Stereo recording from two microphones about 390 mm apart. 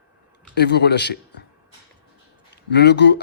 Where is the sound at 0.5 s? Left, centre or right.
Left.